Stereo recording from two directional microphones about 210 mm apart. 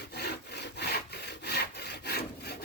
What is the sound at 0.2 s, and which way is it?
Wood, 50° left (ahead or behind).